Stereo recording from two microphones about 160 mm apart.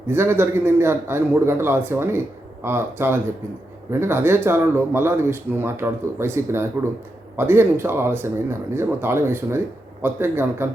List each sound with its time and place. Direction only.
0.1 s speech: 15° right (ahead or behind)